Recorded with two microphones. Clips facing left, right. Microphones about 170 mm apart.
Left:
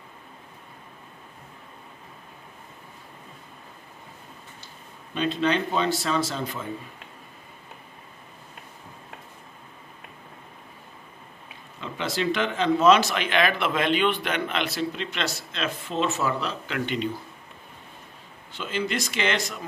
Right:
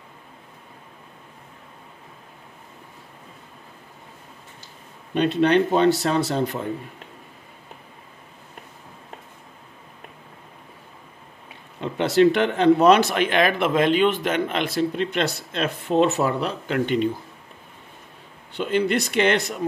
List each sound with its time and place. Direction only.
5.1 s speech: 60° right (ahead or behind)
11.8 s a man's voice: 60° right (ahead or behind)
16.7 s a man's voice: 45° right (ahead or behind)
18.5 s speech: 60° right (ahead or behind)